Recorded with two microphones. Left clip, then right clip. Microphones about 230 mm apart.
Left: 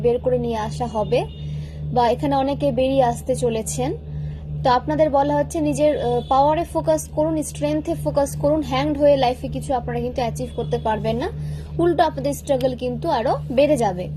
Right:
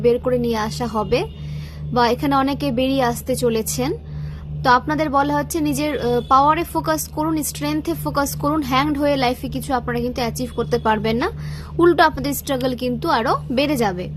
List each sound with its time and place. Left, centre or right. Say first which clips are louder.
0.0 s a woman's voice: right 2 dB; right